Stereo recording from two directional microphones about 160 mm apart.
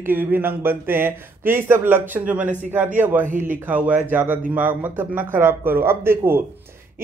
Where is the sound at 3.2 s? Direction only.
55° right (ahead or behind).